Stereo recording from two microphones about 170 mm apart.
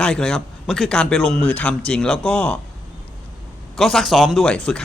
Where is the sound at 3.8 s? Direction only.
Centre (ahead or behind).